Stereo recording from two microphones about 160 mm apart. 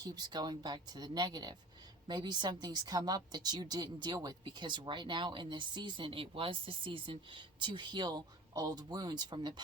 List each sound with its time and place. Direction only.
0.0 s a woman's voice: 25° right (ahead or behind)